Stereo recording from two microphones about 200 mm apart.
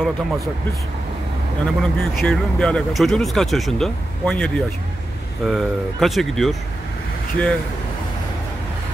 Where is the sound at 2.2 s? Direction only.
5° left (ahead or behind).